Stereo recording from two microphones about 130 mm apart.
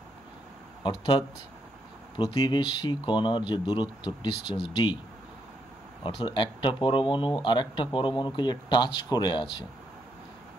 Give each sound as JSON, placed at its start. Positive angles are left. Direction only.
{"t": 0.8, "sound": "speech", "side_deg": 35}
{"t": 2.2, "sound": "speech", "side_deg": 30}
{"t": 6.0, "sound": "speech", "side_deg": 40}